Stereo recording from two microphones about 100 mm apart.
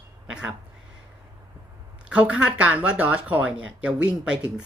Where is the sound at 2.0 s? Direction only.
10° right (ahead or behind).